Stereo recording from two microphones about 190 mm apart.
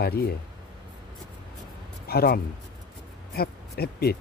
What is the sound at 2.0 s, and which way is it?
A man's voice, 55° left (ahead or behind).